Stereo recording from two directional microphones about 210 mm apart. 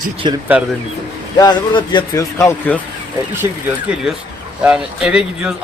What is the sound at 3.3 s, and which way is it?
A man's voice, 10° right (ahead or behind).